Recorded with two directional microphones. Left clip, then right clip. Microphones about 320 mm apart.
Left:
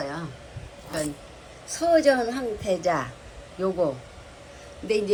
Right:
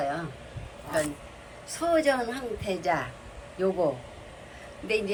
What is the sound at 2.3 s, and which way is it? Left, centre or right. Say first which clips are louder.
Speech: left 5 dB; centre.